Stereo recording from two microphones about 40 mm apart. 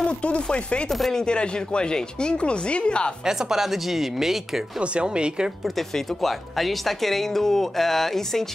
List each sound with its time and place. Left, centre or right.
0.0 s speech: left
0.8 s speech: centre
1.1 s speech: left
3.3 s speech: centre
4.7 s speech: right
5.8 s speech: centre